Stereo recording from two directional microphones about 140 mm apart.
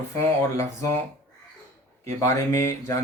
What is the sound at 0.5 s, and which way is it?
Speech, 20° left (ahead or behind).